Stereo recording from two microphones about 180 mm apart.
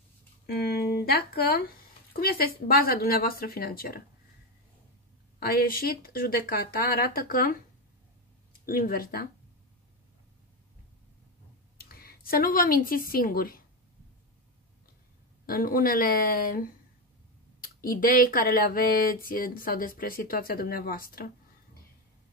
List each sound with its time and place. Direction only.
0.5 s speech: 60° left (ahead or behind)
5.4 s speech: 55° left (ahead or behind)
8.6 s speech: 55° left (ahead or behind)
11.8 s a woman's voice: 55° left (ahead or behind)
15.4 s speech: 55° left (ahead or behind)